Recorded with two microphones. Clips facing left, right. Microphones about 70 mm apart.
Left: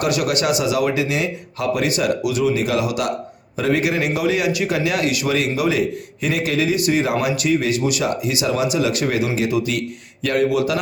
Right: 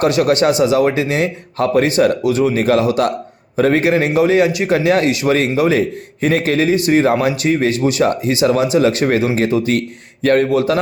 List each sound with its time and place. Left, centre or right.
0.0 s a man's voice: right